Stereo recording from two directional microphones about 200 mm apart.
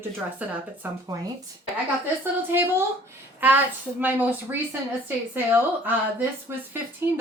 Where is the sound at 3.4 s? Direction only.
10° right (ahead or behind).